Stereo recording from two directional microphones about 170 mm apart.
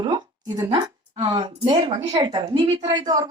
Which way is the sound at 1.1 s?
25° right (ahead or behind).